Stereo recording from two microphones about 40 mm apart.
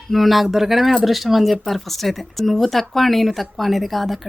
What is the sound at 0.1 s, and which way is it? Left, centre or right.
Speech, centre.